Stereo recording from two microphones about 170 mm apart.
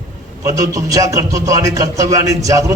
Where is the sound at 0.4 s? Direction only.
20° right (ahead or behind).